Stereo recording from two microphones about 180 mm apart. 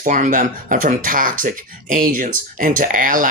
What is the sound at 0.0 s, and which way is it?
Speech, 45° right (ahead or behind).